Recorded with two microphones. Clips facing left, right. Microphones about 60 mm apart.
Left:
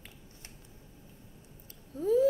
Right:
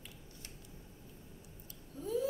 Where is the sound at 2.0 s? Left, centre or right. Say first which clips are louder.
Left 10 dB; left.